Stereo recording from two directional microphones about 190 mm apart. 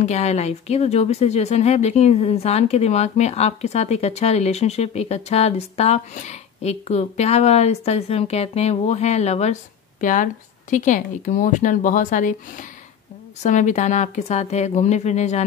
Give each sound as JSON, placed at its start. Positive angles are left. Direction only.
{"t": 0.0, "sound": "a woman's voice", "side_deg": 35}